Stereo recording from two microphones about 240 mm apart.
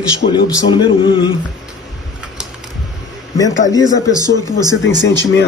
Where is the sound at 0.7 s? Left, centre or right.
Centre.